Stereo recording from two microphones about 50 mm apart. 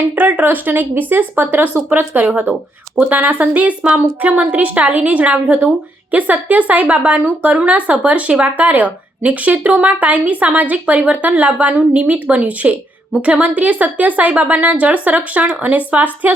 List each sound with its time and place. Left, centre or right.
0.2 s a woman's voice: right
2.5 s a woman's voice: right
3.1 s a woman's voice: right